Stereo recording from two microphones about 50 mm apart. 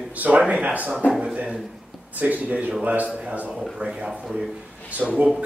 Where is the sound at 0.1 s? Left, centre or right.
Right.